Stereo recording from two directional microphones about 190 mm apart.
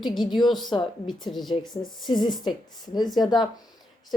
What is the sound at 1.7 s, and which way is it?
Speech, 25° left (ahead or behind).